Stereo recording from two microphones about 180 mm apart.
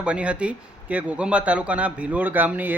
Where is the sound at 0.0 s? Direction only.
5° right (ahead or behind).